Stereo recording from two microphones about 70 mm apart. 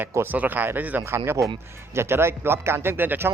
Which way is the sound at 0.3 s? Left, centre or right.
Right.